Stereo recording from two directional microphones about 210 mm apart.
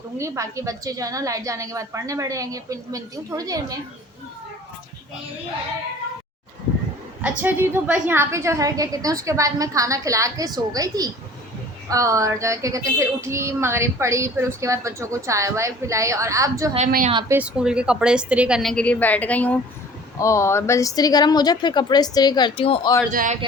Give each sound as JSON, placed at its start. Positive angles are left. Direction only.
{"t": 0.2, "sound": "a woman's voice", "side_deg": -15}
{"t": 7.2, "sound": "a woman's voice", "side_deg": -10}
{"t": 16.7, "sound": "a woman's voice", "side_deg": -35}
{"t": 17.1, "sound": "speech", "side_deg": -20}
{"t": 17.3, "sound": "a woman's voice", "side_deg": -5}
{"t": 23.1, "sound": "a woman's voice", "side_deg": -40}